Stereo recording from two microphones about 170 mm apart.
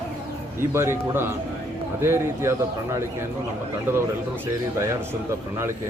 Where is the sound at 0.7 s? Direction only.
15° right (ahead or behind).